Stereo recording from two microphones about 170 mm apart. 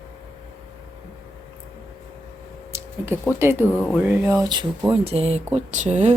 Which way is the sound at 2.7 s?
15° right (ahead or behind).